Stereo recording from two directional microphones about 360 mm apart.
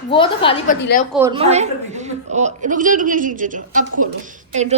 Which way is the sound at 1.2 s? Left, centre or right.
Centre.